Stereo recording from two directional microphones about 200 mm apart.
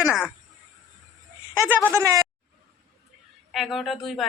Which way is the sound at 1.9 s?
15° right (ahead or behind).